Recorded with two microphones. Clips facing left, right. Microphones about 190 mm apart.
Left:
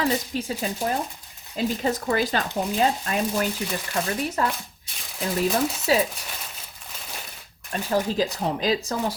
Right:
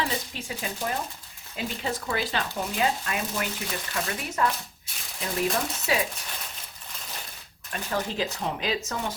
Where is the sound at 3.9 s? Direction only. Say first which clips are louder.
Left 6 dB; 35° left (ahead or behind).